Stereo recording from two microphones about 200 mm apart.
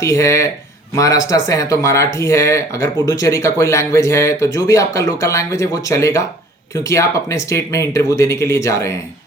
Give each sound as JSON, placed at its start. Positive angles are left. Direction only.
{"t": 0.0, "sound": "speech", "side_deg": 15}